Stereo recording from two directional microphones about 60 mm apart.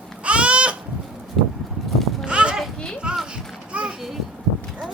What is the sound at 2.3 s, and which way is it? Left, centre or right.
Children playing, centre.